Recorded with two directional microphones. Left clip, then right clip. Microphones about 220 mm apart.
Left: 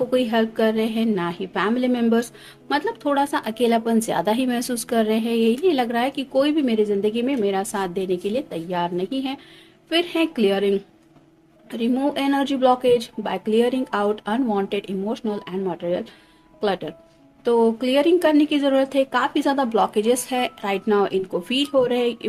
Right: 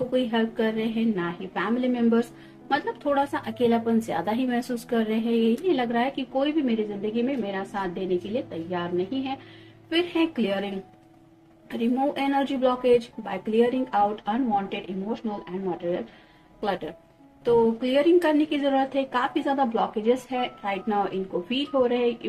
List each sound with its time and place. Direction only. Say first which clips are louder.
0.1 s a woman's voice: left 5 dB; 55° left (ahead or behind)
11.8 s a woman's voice: left 3 dB; 55° left (ahead or behind)